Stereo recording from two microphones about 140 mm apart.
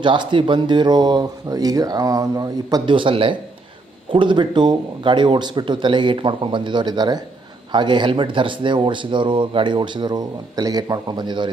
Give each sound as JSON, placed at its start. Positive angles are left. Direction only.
{"t": 0.0, "sound": "speech", "side_deg": -35}